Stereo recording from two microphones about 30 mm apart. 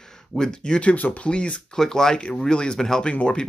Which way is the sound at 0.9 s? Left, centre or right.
Left.